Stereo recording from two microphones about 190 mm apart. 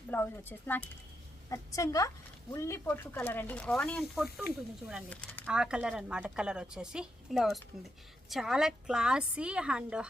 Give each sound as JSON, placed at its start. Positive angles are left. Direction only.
{"t": 0.1, "sound": "speech", "side_deg": 10}
{"t": 5.5, "sound": "speech", "side_deg": -5}